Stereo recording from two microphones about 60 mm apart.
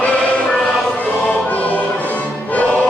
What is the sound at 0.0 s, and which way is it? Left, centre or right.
Music, left.